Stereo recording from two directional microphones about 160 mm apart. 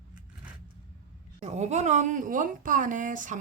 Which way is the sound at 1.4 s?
45° right (ahead or behind).